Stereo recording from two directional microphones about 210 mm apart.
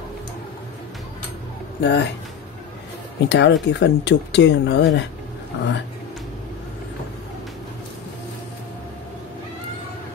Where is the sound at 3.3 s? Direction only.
55° left (ahead or behind).